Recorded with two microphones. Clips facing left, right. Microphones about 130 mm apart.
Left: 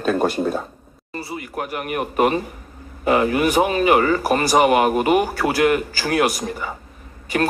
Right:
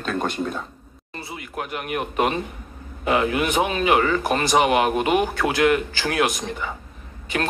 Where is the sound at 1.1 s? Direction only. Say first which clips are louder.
Left 5 dB; 5° left (ahead or behind).